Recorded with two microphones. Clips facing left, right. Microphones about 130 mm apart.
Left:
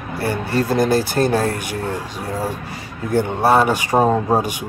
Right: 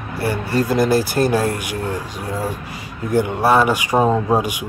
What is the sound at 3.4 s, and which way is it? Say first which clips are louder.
Speech: left 1 dB; 30° left (ahead or behind).